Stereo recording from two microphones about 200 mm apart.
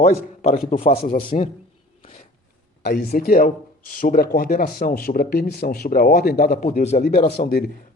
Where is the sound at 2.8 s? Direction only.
50° left (ahead or behind); by 7.0 s 35° left (ahead or behind).